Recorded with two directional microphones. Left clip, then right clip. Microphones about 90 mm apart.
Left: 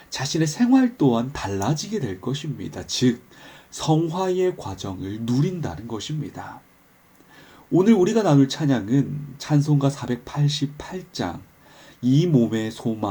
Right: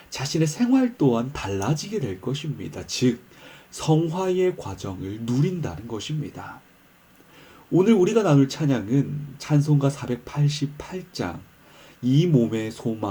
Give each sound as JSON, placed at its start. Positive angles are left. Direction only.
{"t": 0.1, "sound": "speech", "side_deg": 20}
{"t": 7.7, "sound": "speech", "side_deg": 20}